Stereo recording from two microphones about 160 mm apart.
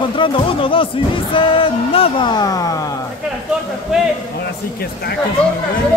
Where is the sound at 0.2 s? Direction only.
35° left (ahead or behind).